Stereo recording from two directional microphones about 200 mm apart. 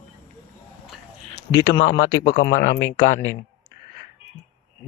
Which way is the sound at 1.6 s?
30° left (ahead or behind).